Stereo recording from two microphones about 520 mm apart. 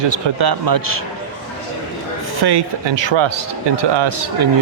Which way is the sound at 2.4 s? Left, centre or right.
Right.